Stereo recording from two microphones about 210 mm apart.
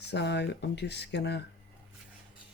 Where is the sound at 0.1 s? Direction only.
55° left (ahead or behind).